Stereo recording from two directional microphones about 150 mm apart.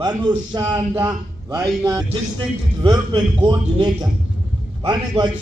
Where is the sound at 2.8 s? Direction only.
30° right (ahead or behind).